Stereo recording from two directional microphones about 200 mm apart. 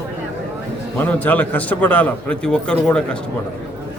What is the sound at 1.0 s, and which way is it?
A man's voice, 10° left (ahead or behind).